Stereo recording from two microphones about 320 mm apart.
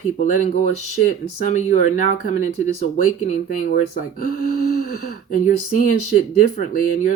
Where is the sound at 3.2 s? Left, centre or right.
Left.